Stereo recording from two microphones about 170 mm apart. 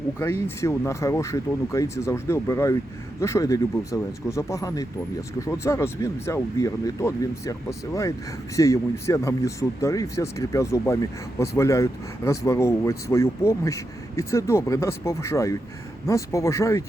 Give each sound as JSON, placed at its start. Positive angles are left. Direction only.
{"t": 0.2, "sound": "speech", "side_deg": 15}